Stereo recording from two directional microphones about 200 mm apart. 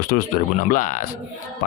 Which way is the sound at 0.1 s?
50° left (ahead or behind).